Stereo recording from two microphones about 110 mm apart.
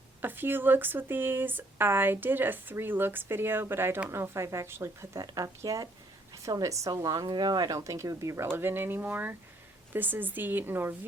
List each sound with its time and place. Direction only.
0.2 s speech: 20° right (ahead or behind)